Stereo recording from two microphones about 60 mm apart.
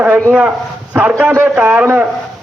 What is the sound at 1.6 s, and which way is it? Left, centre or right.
Speech, right.